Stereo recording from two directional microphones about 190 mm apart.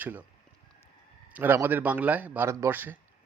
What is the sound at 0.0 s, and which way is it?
Speech, 10° right (ahead or behind).